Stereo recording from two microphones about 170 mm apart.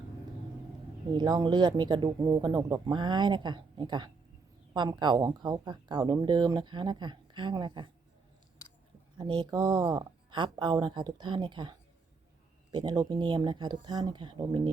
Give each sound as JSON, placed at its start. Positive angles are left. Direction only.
{"t": 1.1, "sound": "speech", "side_deg": -25}
{"t": 9.1, "sound": "speech", "side_deg": -25}
{"t": 12.7, "sound": "speech", "side_deg": -25}